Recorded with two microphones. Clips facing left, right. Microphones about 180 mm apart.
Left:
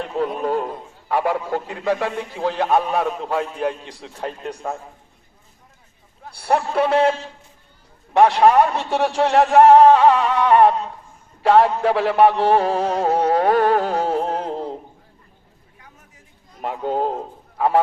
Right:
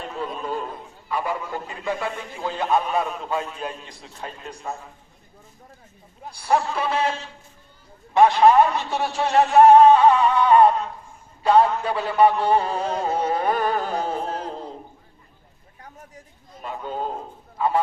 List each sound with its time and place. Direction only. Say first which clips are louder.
0.0 s a man's voice: left 7 dB; 70° left (ahead or behind)
6.3 s a man's voice: left 3 dB; 60° left (ahead or behind); by 10.8 s 85° left
11.4 s music: left 3 dB; 85° left
15.8 s chatter: right 8 dB; 40° right (ahead or behind)
16.6 s a man's voice: left 7 dB; 85° left